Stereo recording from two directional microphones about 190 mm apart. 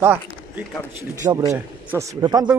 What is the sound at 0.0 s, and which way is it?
Speech, 10° right (ahead or behind).